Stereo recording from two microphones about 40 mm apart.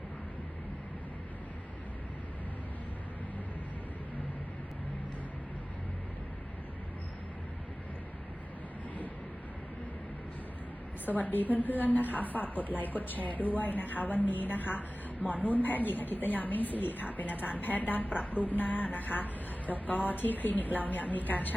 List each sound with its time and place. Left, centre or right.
11.0 s a woman's voice: left